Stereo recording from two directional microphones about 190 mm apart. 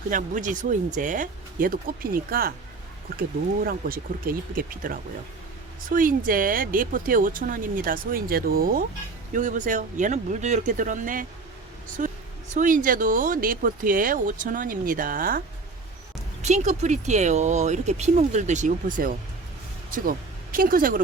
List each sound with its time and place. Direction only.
0.1 s speech: 45° right (ahead or behind)
12.0 s a sound: 45° right (ahead or behind)
12.5 s speech: 45° right (ahead or behind)